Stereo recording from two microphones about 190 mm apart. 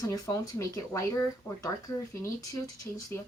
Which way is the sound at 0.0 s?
15° left (ahead or behind).